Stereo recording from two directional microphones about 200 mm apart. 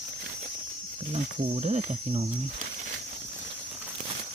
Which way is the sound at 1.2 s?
35° right (ahead or behind).